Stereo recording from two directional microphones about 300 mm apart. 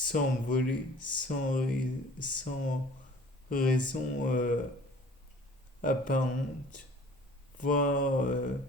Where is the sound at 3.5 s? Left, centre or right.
Left.